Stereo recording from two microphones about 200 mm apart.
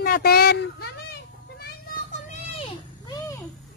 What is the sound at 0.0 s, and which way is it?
Speech, 50° left (ahead or behind).